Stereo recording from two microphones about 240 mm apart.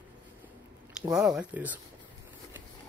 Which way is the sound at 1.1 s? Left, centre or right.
Centre.